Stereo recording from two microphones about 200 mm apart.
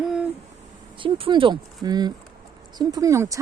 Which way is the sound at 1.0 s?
25° right (ahead or behind).